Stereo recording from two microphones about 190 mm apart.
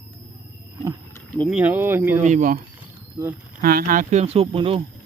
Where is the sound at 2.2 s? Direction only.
40° right (ahead or behind).